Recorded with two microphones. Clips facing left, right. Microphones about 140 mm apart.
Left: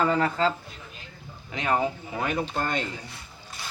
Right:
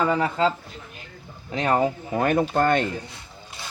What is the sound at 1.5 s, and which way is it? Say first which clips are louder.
Speech: right 4 dB; 40° right (ahead or behind).